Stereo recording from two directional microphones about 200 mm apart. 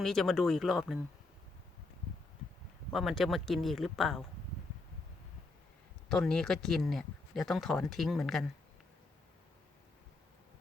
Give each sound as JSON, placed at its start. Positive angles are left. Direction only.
{"t": 0.0, "sound": "speech", "side_deg": 0}
{"t": 2.9, "sound": "speech", "side_deg": 0}
{"t": 6.1, "sound": "speech", "side_deg": 0}